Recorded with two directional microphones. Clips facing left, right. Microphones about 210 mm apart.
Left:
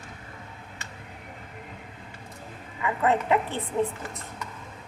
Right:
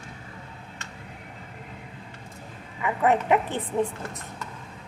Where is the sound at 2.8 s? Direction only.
20° right (ahead or behind).